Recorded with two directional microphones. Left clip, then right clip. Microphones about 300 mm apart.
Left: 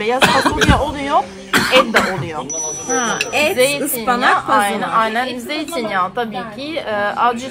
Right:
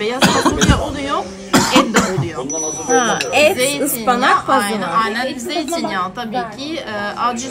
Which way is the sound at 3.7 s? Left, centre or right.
Centre.